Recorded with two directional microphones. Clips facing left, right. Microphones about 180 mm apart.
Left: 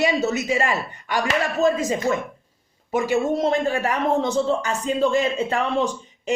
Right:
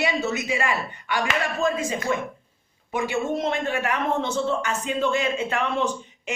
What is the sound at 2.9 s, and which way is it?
Speech, 40° left (ahead or behind).